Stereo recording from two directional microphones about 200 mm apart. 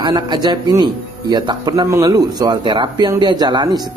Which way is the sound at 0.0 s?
20° right (ahead or behind).